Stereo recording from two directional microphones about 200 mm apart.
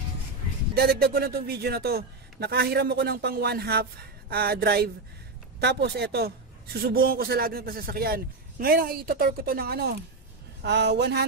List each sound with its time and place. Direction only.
0.7 s a man's voice: 50° right (ahead or behind)